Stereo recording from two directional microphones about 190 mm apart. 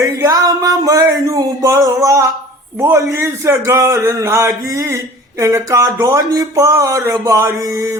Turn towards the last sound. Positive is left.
turn(degrees=-15)  # may be behind; listen again after turning